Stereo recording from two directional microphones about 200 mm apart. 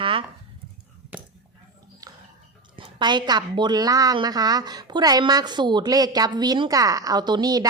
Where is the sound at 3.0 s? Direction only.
20° right (ahead or behind).